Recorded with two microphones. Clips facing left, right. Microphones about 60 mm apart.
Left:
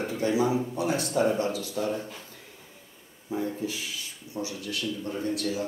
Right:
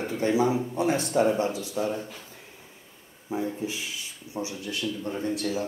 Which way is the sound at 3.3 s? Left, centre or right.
Centre.